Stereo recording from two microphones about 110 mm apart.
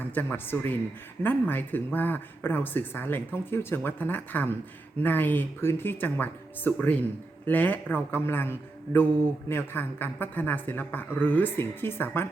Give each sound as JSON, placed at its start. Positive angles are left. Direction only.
{"t": 0.1, "sound": "speech", "side_deg": 20}